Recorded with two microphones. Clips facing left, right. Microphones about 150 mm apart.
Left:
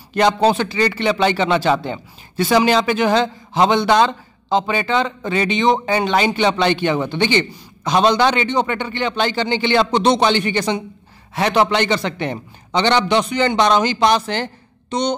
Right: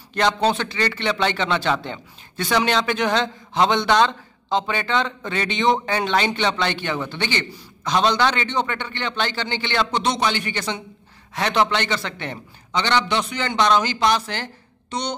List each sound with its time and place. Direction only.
0.1 s a man's voice: 10° left (ahead or behind)
6.5 s a man's voice: 15° left (ahead or behind)